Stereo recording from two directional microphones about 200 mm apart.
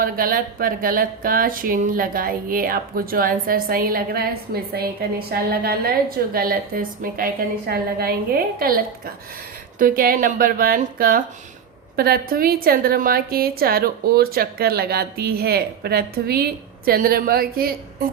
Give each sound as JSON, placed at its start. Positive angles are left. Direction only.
{"t": 0.0, "sound": "a woman's voice", "side_deg": -45}